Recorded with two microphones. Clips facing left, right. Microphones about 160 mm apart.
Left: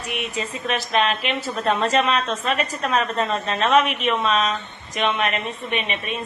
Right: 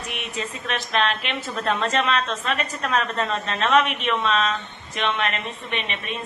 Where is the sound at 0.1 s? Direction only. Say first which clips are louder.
Left 5 dB; 10° left (ahead or behind).